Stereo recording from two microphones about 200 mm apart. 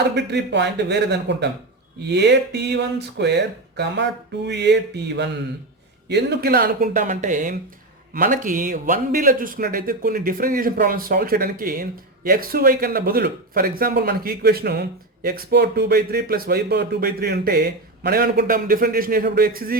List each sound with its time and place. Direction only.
0.1 s speech: 60° right (ahead or behind)